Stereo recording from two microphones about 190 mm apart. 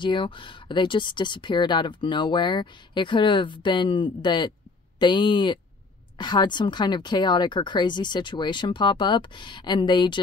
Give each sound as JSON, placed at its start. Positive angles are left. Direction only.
{"t": 0.0, "sound": "speech", "side_deg": 25}